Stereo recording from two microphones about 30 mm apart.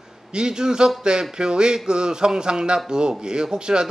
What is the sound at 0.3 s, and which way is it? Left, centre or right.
A man's voice, right.